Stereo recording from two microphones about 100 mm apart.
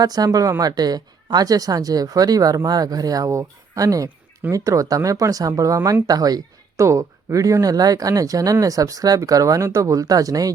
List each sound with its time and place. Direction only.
0.0 s speech: 40° right (ahead or behind)